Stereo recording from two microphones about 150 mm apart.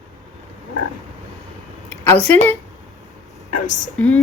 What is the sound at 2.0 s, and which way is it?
Speech, 15° left (ahead or behind).